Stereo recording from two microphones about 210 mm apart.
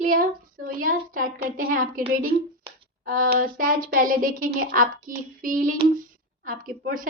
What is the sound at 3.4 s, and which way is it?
A woman's voice, 40° right (ahead or behind).